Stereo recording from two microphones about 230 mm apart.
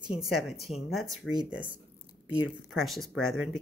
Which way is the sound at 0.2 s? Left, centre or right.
Centre.